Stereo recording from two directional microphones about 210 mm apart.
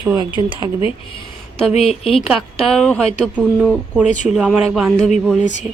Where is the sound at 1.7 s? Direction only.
30° left (ahead or behind).